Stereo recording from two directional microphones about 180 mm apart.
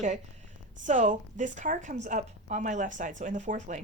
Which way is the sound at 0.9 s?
45° right (ahead or behind).